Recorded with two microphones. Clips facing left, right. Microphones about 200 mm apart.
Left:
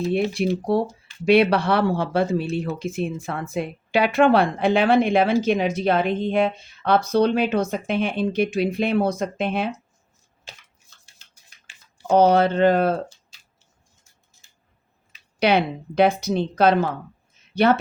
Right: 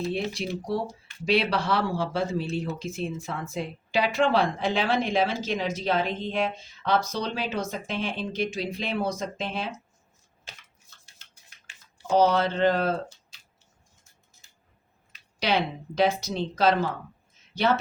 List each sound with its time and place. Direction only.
0.3 s speech: 55° left (ahead or behind)
12.0 s speech: 60° left (ahead or behind)
15.4 s speech: 60° left (ahead or behind)